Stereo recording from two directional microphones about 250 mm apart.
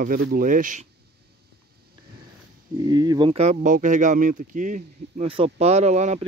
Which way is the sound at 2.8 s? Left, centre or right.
Centre.